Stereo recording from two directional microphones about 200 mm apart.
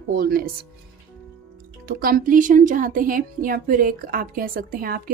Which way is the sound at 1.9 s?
45° right (ahead or behind).